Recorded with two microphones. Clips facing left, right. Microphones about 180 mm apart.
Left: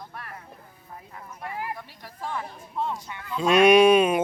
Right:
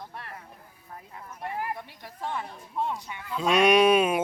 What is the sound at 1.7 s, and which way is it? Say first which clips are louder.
Speech: right 1 dB; 20° right (ahead or behind).